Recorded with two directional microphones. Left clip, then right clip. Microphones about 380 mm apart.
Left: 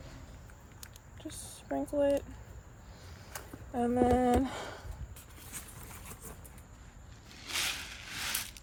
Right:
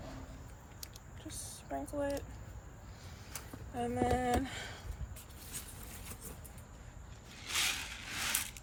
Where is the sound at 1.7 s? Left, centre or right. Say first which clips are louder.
Left 7 dB; left.